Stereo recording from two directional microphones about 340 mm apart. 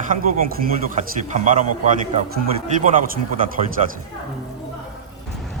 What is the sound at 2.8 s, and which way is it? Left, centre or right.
Speech, right.